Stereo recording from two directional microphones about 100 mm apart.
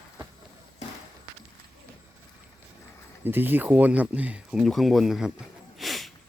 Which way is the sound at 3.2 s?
20° right (ahead or behind).